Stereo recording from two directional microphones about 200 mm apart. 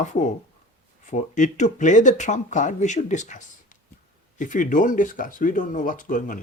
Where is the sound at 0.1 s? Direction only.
35° left (ahead or behind).